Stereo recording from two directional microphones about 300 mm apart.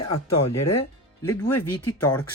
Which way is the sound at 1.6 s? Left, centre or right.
Left.